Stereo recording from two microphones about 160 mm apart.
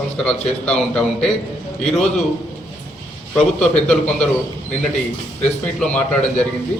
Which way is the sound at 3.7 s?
5° left (ahead or behind).